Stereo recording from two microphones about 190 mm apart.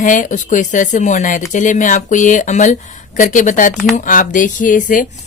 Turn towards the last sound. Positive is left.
turn(degrees=45)  # may be behind; listen again after turning